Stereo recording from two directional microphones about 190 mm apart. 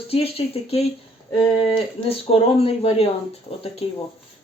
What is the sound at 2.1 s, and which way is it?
Speech, 30° left (ahead or behind).